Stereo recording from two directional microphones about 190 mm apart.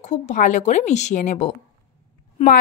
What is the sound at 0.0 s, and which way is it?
Speech, 40° left (ahead or behind).